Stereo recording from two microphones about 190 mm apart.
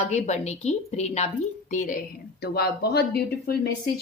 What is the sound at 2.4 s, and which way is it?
Speech, 60° left (ahead or behind).